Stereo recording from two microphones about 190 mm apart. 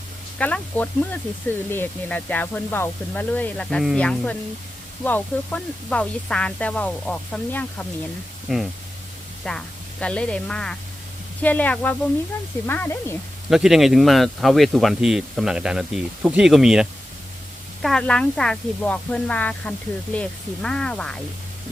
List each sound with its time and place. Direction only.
0.3 s speech: 10° left (ahead or behind)
13.5 s speech: centre (ahead or behind)
17.8 s speech: 5° left (ahead or behind)